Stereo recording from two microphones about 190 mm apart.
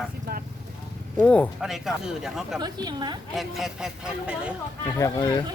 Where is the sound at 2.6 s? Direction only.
20° right (ahead or behind).